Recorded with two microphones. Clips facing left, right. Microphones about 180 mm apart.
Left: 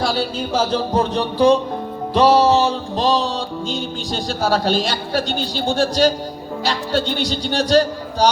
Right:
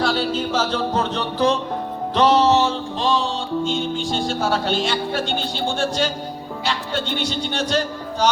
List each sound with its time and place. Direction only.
0.0 s music: 10° left (ahead or behind)
3.0 s speech: 40° left (ahead or behind)